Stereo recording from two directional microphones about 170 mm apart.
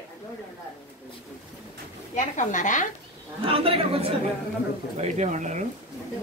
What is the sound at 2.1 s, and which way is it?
Speech, 45° left (ahead or behind).